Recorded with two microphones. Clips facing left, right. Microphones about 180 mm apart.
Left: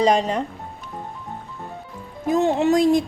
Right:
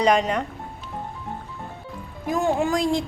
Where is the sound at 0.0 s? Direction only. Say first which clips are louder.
Left 1 dB; 30° left (ahead or behind).